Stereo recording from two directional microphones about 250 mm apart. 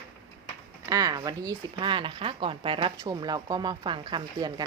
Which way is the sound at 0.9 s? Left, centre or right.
Centre.